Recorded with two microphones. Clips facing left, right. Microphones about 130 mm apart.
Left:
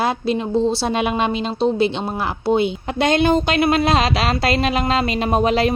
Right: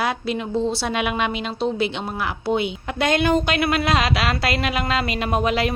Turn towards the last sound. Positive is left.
turn(degrees=30)  # may be behind; listen again after turning